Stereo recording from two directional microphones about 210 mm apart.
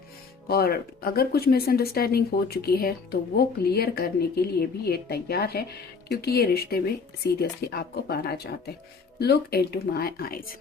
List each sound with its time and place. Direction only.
0.4 s speech: 45° left (ahead or behind)